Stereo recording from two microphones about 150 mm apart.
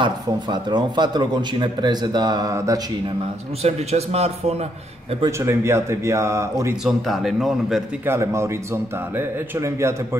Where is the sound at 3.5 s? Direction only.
45° right (ahead or behind).